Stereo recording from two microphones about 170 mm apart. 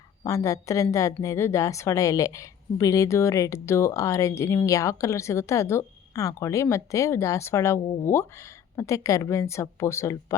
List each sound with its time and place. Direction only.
0.2 s a woman's voice: 20° left (ahead or behind)